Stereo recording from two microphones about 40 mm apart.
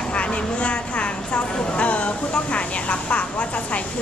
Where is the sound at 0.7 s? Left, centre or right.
Left.